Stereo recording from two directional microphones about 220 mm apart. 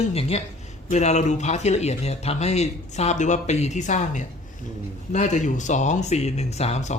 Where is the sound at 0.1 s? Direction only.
30° left (ahead or behind).